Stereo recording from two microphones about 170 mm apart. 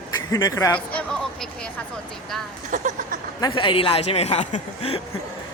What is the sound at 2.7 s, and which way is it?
Speech, 45° right (ahead or behind).